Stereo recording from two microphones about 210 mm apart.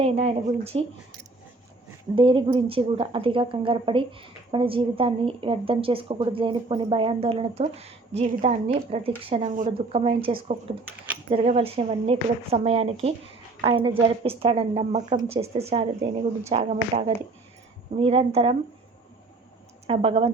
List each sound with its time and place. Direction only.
0.0 s a woman's voice: 30° right (ahead or behind)
2.1 s a woman's voice: 25° right (ahead or behind)
19.9 s a woman's voice: 25° right (ahead or behind)